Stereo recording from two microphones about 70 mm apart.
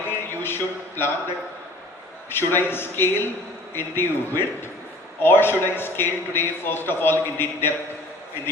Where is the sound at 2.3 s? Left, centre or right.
Left.